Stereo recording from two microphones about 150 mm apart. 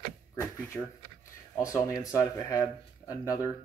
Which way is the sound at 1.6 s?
20° left (ahead or behind).